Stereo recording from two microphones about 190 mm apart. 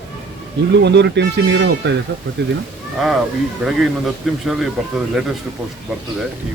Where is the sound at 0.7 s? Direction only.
65° right (ahead or behind).